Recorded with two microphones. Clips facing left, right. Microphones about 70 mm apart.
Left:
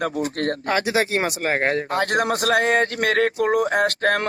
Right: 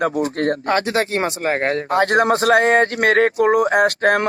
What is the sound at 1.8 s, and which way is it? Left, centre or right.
Speech, right.